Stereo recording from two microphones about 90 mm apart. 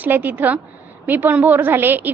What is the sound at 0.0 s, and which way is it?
A woman's voice, 20° right (ahead or behind).